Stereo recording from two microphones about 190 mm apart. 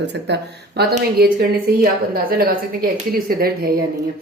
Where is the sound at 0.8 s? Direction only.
55° right (ahead or behind).